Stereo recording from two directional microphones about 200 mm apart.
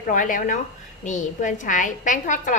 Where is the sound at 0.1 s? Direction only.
40° left (ahead or behind).